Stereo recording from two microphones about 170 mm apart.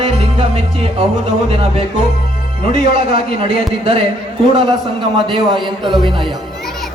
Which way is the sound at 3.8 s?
30° right (ahead or behind).